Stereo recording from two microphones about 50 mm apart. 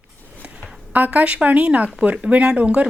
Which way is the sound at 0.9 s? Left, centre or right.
Right.